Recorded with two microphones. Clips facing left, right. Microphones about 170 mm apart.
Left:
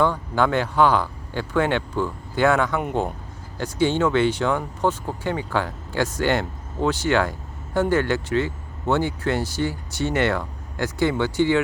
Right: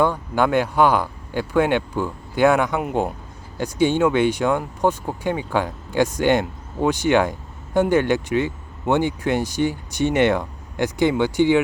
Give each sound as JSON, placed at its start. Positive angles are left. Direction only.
{"t": 0.0, "sound": "speech", "side_deg": -15}